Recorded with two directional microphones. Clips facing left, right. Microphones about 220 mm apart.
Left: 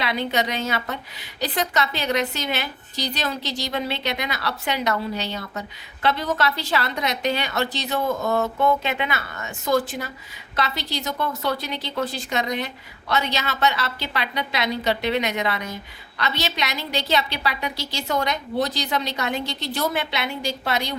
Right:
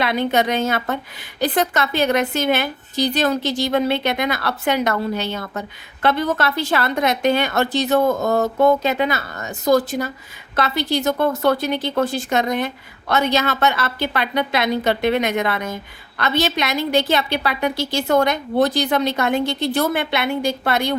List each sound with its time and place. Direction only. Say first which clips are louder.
0.0 s speech: right 6 dB; 50° right (ahead or behind)
10.5 s speech: right 7 dB; 50° right (ahead or behind)